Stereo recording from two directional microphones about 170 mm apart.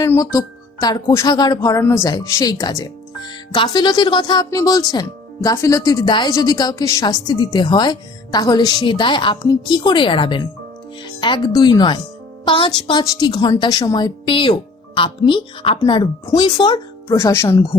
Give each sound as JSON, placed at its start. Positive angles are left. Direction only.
{"t": 0.0, "sound": "speech", "side_deg": 15}